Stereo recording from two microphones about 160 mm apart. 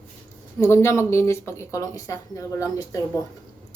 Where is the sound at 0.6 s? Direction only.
15° left (ahead or behind).